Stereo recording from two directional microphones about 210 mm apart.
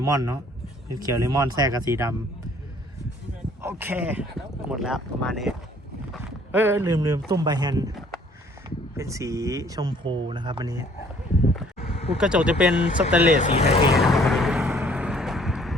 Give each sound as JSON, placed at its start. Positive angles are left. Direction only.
{"t": 0.0, "sound": "speech", "side_deg": -15}
{"t": 3.6, "sound": "speech", "side_deg": -10}
{"t": 6.5, "sound": "speech", "side_deg": -10}
{"t": 9.0, "sound": "speech", "side_deg": -15}
{"t": 12.1, "sound": "speech", "side_deg": -5}
{"t": 13.5, "sound": "speech", "side_deg": 30}
{"t": 14.0, "sound": "vehicle", "side_deg": 0}